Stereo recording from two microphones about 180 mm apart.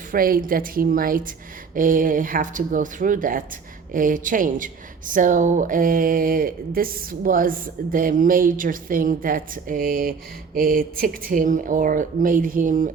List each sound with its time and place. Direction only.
0.1 s a woman's voice: 50° right (ahead or behind)